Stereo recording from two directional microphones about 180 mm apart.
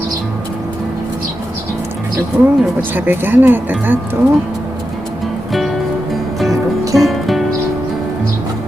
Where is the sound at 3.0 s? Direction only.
10° right (ahead or behind).